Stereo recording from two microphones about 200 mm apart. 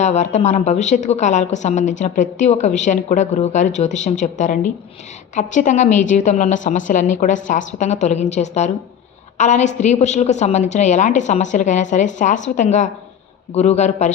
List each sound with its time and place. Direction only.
0.0 s a woman's voice: 35° left (ahead or behind)